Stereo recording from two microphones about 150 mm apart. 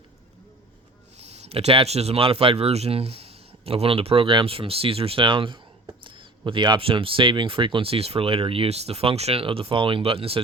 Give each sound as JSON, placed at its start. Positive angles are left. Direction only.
{"t": 1.2, "sound": "speech", "side_deg": -45}